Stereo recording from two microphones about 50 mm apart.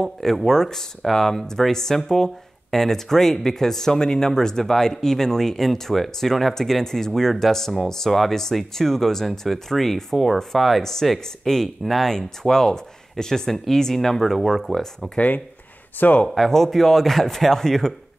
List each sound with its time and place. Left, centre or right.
0.0 s speech: centre
15.1 s speech: left
16.3 s speech: centre